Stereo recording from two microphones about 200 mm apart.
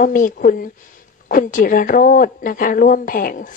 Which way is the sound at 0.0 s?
40° left (ahead or behind).